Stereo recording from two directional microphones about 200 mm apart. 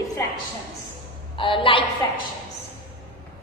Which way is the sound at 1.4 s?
25° left (ahead or behind).